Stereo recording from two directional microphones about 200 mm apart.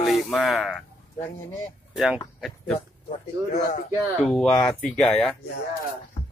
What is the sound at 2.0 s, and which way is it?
Speech, centre (ahead or behind).